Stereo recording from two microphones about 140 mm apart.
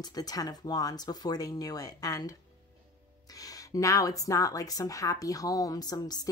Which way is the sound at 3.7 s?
25° left (ahead or behind).